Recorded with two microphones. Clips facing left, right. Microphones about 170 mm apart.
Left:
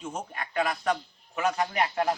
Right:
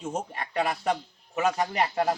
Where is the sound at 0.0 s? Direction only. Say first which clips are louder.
Right 3 dB; 30° right (ahead or behind).